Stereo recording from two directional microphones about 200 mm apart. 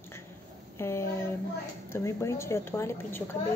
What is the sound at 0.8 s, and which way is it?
A woman's voice, 15° left (ahead or behind).